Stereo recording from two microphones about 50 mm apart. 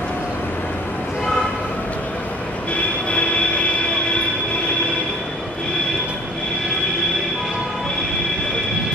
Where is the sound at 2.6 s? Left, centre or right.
Left.